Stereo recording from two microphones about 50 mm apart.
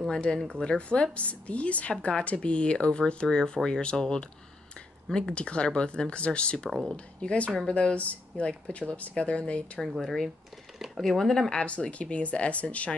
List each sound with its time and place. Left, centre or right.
0.1 s a woman's voice: left
5.3 s a woman's voice: left
9.9 s speech: centre
11.5 s a woman's voice: left